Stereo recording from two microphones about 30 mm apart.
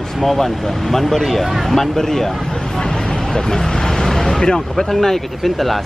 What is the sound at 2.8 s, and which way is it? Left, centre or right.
Vehicle, centre.